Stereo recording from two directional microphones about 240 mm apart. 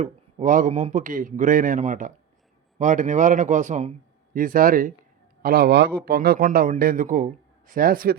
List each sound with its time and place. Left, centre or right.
0.0 s a man's voice: right